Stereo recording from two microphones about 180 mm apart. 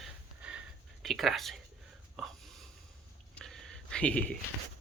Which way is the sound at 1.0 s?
Centre (ahead or behind).